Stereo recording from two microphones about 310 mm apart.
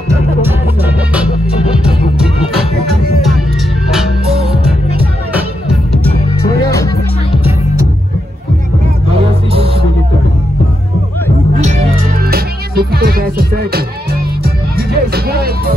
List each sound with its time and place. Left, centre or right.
0.1 s music: centre
6.5 s music: centre
9.5 s music: centre
11.5 s music: right